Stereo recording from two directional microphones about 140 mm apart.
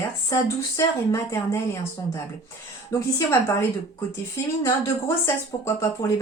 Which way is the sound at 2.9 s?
20° left (ahead or behind).